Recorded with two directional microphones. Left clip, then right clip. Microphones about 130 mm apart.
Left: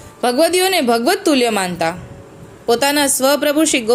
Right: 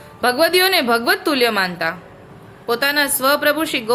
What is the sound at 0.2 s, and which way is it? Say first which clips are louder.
Speech: left 1 dB; 30° left (ahead or behind).